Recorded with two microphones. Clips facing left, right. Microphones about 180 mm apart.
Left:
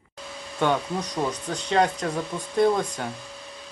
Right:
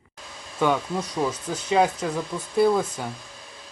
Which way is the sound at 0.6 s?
5° right (ahead or behind).